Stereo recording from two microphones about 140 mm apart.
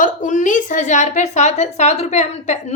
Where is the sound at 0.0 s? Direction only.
65° left (ahead or behind).